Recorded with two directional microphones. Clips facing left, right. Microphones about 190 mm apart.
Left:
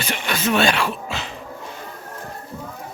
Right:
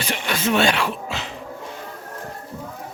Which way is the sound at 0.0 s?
30° right (ahead or behind).